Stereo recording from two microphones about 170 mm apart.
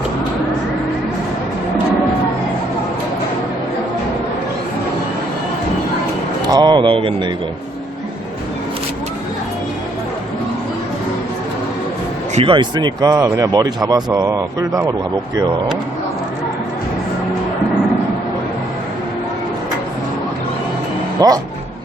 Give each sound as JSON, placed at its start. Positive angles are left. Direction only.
{"t": 6.4, "sound": "speech", "side_deg": -25}
{"t": 12.3, "sound": "speech", "side_deg": -40}
{"t": 12.5, "sound": "speech", "side_deg": -25}
{"t": 21.2, "sound": "speech", "side_deg": -20}